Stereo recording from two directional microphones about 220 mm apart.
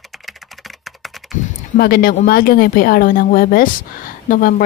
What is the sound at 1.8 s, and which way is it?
A woman's voice, 45° left (ahead or behind).